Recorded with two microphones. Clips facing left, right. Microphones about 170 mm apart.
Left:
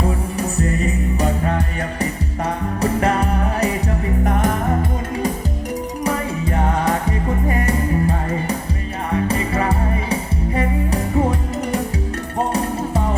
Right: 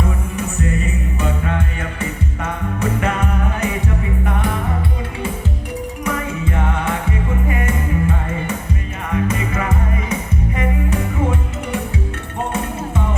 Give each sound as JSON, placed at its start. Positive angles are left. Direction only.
{"t": 0.0, "sound": "music", "side_deg": 35}